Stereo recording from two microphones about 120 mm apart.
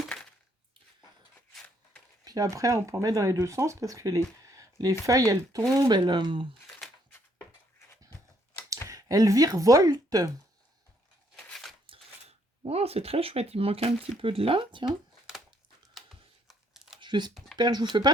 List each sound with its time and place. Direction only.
2.2 s speech: 30° right (ahead or behind)
8.9 s speech: 30° right (ahead or behind)
11.3 s a sound: 5° left (ahead or behind)
12.6 s speech: 55° right (ahead or behind)
16.0 s camera: centre (ahead or behind)
17.0 s a sound: 40° right (ahead or behind)
17.6 s speech: 35° right (ahead or behind)